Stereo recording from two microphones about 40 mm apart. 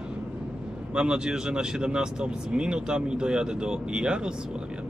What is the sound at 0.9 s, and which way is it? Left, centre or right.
Speech, right.